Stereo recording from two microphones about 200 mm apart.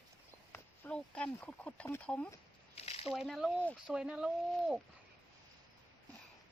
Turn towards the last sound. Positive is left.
turn(degrees=-5)  # may be behind; listen again after turning